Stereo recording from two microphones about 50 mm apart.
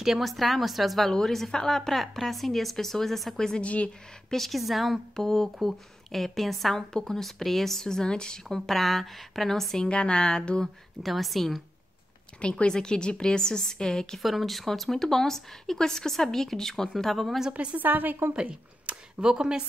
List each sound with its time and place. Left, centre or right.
0.0 s speech: centre
3.6 s speech: left
4.3 s speech: centre
9.8 s a woman's voice: centre
10.6 s speech: centre
12.4 s a woman's voice: left; by 17.4 s centre
17.4 s a woman's voice: centre
17.7 s a woman's voice: right
18.3 s a woman's voice: right